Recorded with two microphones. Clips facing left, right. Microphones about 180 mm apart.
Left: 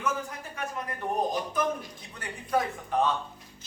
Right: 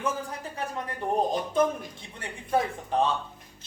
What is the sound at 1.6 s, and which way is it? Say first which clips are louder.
A man's voice: right 4 dB; 30° right (ahead or behind).